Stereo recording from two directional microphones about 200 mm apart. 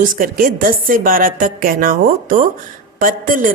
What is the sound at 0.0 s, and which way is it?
A woman's voice, 45° right (ahead or behind).